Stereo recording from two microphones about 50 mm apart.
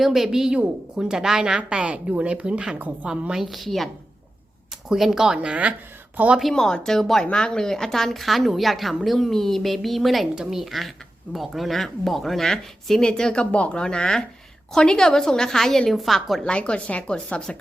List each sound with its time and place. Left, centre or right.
0.0 s a woman's voice: centre
1.8 s speech: right
2.7 s a woman's voice: right
3.1 s a woman's voice: centre
3.4 s speech: centre
4.9 s a woman's voice: centre
5.5 s speech: right
6.5 s a woman's voice: centre
7.3 s speech: centre
10.3 s a woman's voice: centre
16.4 s speech: left